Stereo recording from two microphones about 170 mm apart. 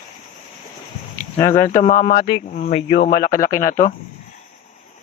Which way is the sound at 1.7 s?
45° left (ahead or behind).